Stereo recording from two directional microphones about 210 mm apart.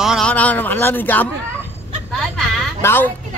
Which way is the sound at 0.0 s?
Centre (ahead or behind).